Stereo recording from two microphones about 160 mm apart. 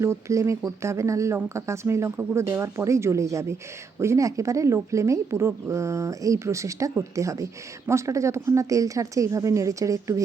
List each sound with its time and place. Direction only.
0.0 s a woman's voice: 20° right (ahead or behind)